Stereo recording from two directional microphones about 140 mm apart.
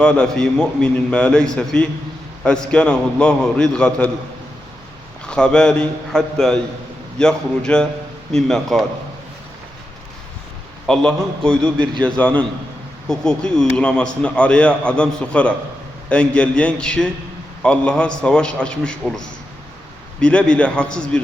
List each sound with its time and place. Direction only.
0.0 s a man's voice: 5° left (ahead or behind)
5.2 s a man's voice: 5° left (ahead or behind)
10.8 s a man's voice: 5° left (ahead or behind)